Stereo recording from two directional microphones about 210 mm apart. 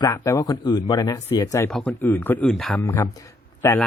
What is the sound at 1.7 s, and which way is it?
Speech, 5° left (ahead or behind).